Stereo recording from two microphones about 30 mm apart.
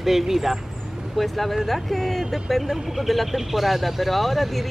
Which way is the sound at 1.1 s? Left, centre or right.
Centre.